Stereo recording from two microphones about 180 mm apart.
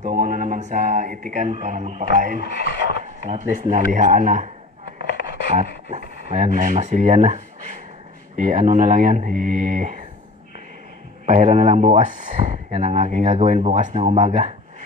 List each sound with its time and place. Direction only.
0.0 s mantra: 55° right (ahead or behind)
1.2 s speech: 45° right (ahead or behind)
3.0 s a sound: 40° right (ahead or behind)
3.7 s speech: 45° right (ahead or behind)
5.5 s speech: 40° right (ahead or behind)
9.3 s speech: centre (ahead or behind)
9.7 s speech: 50° right (ahead or behind)
11.2 s speech: 40° right (ahead or behind)